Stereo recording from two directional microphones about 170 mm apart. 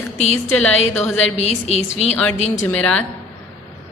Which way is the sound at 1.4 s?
40° left (ahead or behind).